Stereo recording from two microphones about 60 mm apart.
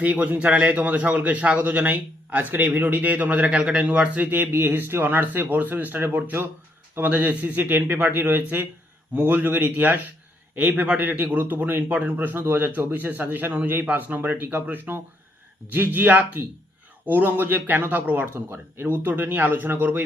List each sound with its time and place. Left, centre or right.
0.0 s a man's voice: right
18.3 s a man's voice: right